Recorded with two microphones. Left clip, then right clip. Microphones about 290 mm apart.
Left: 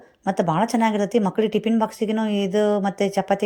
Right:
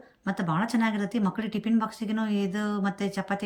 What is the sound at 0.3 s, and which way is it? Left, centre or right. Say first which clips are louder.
Speech: left 9 dB; centre.